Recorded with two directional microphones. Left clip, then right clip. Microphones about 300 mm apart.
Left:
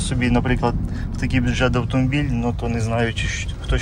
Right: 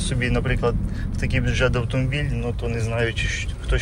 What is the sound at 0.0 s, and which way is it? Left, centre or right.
Speech, centre.